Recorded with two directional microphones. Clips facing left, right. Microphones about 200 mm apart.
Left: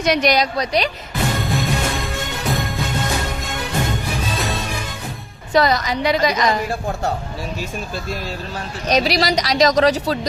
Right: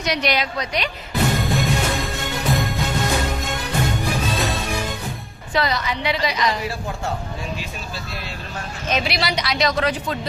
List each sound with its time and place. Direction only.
0.0 s speech: 50° left (ahead or behind)
1.4 s music: centre (ahead or behind)
5.5 s a woman's voice: 45° left (ahead or behind)
8.9 s speech: 40° left (ahead or behind)